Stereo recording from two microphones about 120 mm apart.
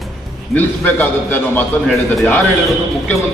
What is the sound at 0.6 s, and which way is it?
A man's voice, 15° left (ahead or behind).